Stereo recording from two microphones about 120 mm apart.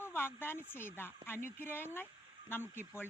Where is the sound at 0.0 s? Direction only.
20° left (ahead or behind).